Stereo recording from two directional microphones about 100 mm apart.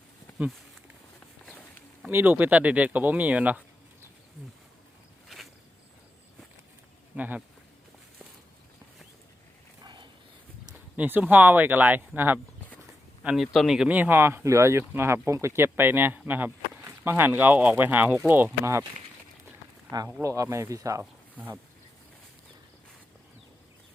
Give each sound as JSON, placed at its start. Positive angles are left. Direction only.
{"t": 2.0, "sound": "speech", "side_deg": -20}
{"t": 7.2, "sound": "speech", "side_deg": -15}
{"t": 9.8, "sound": "a sound", "side_deg": -50}
{"t": 10.9, "sound": "speech", "side_deg": -15}
{"t": 13.2, "sound": "speech", "side_deg": -5}
{"t": 20.2, "sound": "speech", "side_deg": -35}
{"t": 21.0, "sound": "speech", "side_deg": -20}